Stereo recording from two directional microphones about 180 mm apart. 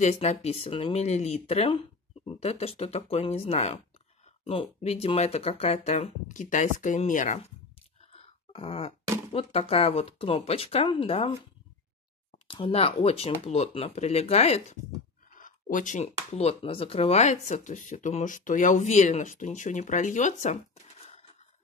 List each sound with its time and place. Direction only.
0.0 s speech: 40° left (ahead or behind)
8.1 s a sound: 30° left (ahead or behind)
9.3 s speech: 35° left (ahead or behind)
15.3 s speech: 45° left (ahead or behind)